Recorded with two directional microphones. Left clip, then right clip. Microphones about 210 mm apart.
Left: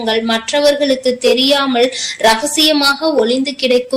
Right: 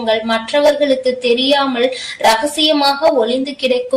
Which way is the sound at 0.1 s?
50° left (ahead or behind).